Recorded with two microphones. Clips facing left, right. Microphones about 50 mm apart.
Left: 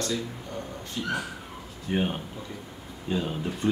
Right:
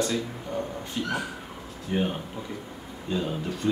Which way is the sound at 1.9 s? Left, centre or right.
Centre.